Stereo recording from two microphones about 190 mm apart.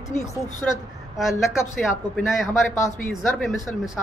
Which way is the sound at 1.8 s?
Centre (ahead or behind).